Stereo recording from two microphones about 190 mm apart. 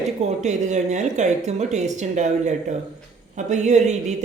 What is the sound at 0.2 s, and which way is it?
Speech, 35° right (ahead or behind).